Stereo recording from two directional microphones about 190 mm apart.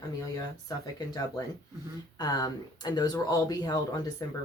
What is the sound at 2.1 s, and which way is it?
Speech, 20° left (ahead or behind).